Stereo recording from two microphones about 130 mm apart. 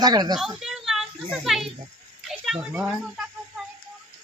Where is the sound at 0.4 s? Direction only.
5° right (ahead or behind).